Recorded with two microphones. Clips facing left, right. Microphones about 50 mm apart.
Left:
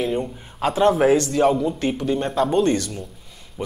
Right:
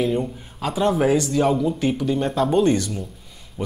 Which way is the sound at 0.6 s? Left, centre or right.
Left.